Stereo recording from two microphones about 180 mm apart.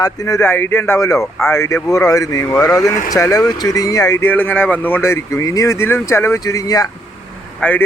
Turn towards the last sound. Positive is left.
turn(degrees=5)  # may be behind; listen again after turning